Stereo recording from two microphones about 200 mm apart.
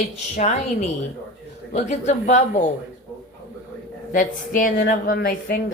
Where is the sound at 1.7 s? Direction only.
35° left (ahead or behind).